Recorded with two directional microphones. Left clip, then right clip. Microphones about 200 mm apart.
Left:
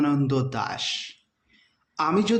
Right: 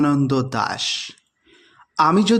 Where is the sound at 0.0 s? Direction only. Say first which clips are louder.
Right 5 dB; 35° right (ahead or behind).